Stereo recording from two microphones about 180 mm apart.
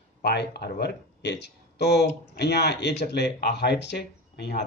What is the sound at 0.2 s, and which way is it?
Speech, 65° left (ahead or behind).